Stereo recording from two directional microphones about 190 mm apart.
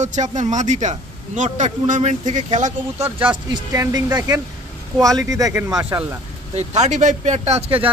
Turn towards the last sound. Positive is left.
turn(degrees=-30)  # may be behind; listen again after turning